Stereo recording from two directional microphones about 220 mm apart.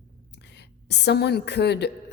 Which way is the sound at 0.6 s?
50° left (ahead or behind).